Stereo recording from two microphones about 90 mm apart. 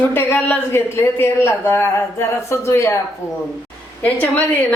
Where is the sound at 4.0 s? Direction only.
20° left (ahead or behind).